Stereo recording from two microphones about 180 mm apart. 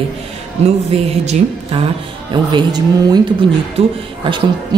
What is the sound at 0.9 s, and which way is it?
A woman's voice, 35° right (ahead or behind).